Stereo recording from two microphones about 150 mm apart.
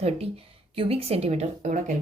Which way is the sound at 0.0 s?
40° right (ahead or behind).